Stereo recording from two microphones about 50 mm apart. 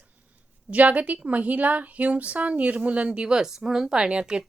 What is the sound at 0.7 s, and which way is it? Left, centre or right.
A woman's voice, right.